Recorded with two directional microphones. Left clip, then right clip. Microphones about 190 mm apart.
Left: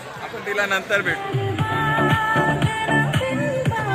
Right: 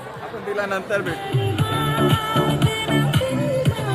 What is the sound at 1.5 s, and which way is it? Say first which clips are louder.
Music: left 3 dB; 40° right (ahead or behind).